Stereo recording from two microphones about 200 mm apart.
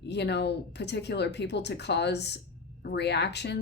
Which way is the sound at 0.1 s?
55° left (ahead or behind).